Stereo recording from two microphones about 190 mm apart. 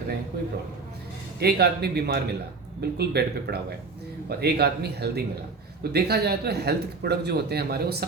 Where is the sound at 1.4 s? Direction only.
55° right (ahead or behind).